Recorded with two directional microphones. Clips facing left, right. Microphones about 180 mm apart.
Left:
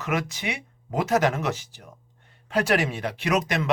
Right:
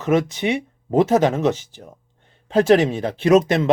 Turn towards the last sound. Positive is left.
turn(degrees=-25)  # may be behind; listen again after turning